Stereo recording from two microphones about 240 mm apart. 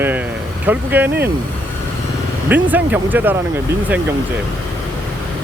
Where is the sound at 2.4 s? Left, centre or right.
Centre.